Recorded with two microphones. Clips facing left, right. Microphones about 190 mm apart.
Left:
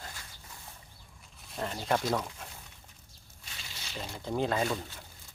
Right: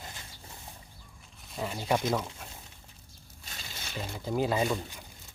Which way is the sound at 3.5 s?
45° right (ahead or behind).